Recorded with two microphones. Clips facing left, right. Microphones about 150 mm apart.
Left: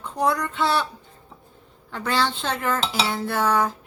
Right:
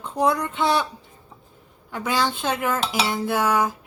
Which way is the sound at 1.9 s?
10° right (ahead or behind).